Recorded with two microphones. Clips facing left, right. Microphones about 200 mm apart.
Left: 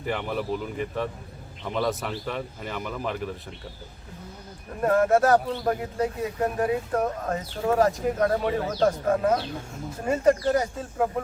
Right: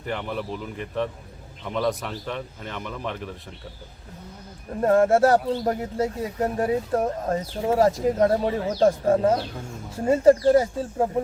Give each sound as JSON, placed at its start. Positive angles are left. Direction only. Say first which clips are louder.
{"t": 0.0, "sound": "speech", "louder": "left 1 dB", "side_deg": 5}
{"t": 4.8, "sound": "speech", "louder": "right 3 dB", "side_deg": -25}